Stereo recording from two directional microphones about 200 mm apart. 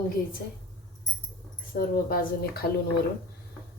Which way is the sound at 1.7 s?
45° left (ahead or behind).